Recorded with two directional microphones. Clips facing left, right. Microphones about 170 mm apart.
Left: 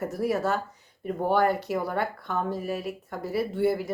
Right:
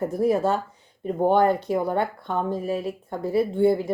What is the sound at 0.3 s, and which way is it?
Speech, 30° right (ahead or behind).